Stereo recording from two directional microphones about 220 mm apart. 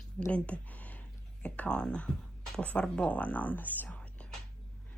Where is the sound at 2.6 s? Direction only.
5° left (ahead or behind).